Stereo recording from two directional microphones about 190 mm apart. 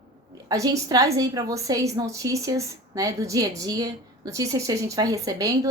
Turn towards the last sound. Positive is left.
turn(degrees=-20)  # may be behind; listen again after turning